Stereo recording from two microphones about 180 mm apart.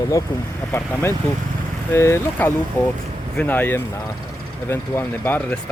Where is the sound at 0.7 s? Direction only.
15° left (ahead or behind).